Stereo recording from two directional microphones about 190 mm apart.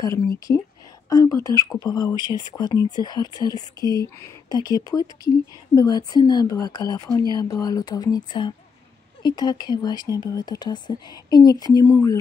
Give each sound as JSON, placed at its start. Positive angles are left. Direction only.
{"t": 1.0, "sound": "speech", "side_deg": 15}